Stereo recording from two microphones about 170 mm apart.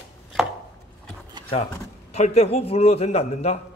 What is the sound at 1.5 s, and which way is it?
A man's voice, 40° left (ahead or behind).